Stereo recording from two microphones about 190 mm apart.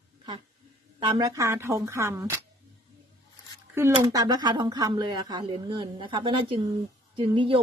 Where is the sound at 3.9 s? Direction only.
20° right (ahead or behind).